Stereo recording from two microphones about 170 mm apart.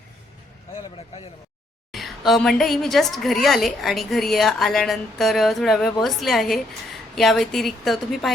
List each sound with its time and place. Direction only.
0.9 s speech: 35° left (ahead or behind)
1.9 s a woman's voice: centre (ahead or behind)